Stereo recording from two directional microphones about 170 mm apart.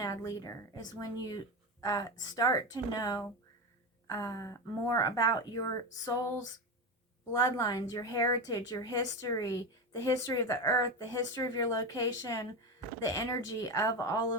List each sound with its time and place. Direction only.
0.0 s a woman's voice: 20° left (ahead or behind)